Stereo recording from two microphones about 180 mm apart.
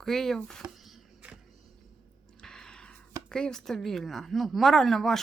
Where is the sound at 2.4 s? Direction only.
5° left (ahead or behind).